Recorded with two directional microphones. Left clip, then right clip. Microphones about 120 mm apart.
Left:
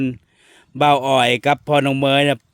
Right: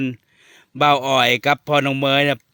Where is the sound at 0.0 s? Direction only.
35° left (ahead or behind).